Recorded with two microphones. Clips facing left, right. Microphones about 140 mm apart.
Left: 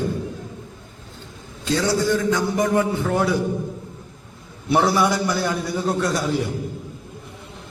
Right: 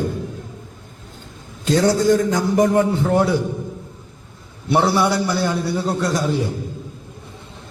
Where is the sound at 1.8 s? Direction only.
45° right (ahead or behind).